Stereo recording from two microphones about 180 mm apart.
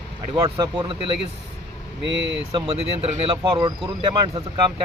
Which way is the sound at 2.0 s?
85° right.